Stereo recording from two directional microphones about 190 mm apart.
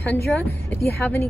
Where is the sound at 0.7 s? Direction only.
15° left (ahead or behind).